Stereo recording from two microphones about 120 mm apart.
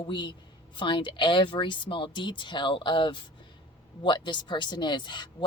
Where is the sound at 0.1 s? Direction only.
40° left (ahead or behind).